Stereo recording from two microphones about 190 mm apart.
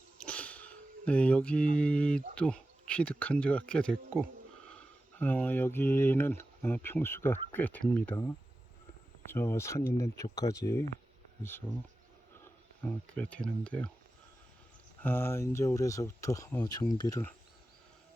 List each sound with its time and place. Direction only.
0.2 s a sound: 5° left (ahead or behind)
2.3 s speech: 5° left (ahead or behind)
9.3 s speech: 15° left (ahead or behind)
12.8 s speech: 5° left (ahead or behind)
15.0 s speech: 10° left (ahead or behind)